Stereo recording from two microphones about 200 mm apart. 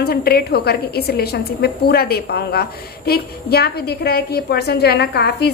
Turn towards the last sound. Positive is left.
turn(degrees=55)  # may be behind; listen again after turning